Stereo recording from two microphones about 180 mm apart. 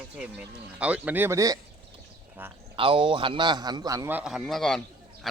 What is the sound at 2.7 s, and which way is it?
A man's voice, 30° right (ahead or behind).